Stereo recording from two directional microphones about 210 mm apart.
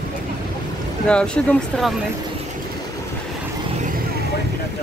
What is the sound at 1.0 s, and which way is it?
Speech, 5° left (ahead or behind).